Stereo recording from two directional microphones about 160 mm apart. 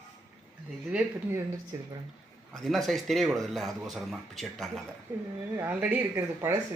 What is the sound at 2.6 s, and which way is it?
Speech, centre (ahead or behind).